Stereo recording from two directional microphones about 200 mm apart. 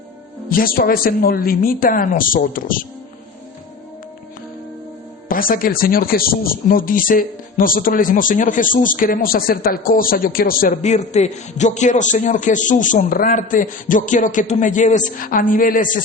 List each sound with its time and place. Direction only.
0.5 s speech: 45° left (ahead or behind)
5.3 s speech: 45° left (ahead or behind)